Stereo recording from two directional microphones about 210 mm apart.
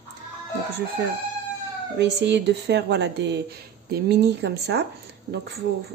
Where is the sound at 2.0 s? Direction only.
55° right (ahead or behind).